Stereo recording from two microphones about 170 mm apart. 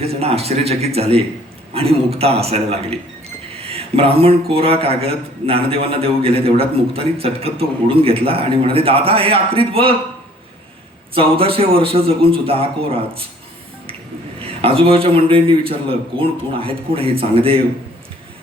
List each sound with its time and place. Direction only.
0.0 s a man's voice: 35° right (ahead or behind)
11.1 s a man's voice: 35° right (ahead or behind)
14.6 s a man's voice: 35° right (ahead or behind)